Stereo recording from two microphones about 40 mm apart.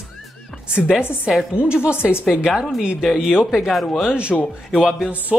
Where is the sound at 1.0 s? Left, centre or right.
Left.